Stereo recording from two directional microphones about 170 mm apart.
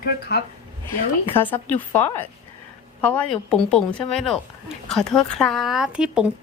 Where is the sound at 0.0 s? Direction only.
70° left (ahead or behind).